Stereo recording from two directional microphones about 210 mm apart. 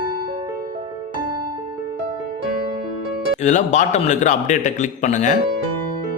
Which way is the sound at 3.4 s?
35° left (ahead or behind).